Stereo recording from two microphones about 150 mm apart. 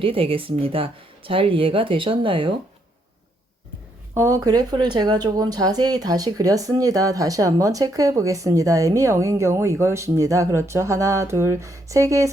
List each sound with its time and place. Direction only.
0.0 s speech: 35° right (ahead or behind)
4.1 s speech: 20° right (ahead or behind)